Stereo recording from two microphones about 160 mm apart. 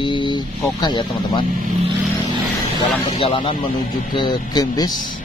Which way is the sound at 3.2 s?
35° left (ahead or behind).